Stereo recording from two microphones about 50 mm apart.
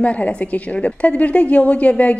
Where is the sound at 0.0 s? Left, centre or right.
Left.